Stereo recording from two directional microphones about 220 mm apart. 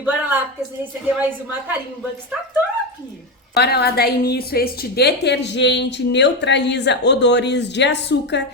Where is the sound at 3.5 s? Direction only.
45° left (ahead or behind).